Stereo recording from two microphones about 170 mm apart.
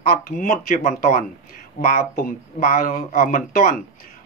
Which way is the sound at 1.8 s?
55° left (ahead or behind).